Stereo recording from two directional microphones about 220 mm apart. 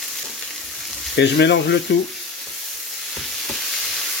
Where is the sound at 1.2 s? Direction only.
50° left (ahead or behind).